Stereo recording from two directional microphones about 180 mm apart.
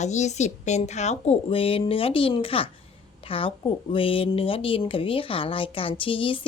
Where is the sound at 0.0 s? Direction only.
40° left (ahead or behind).